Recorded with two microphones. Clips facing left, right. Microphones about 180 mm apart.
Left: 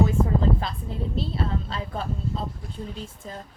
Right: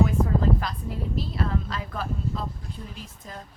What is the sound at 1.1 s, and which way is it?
Speech, 30° left (ahead or behind).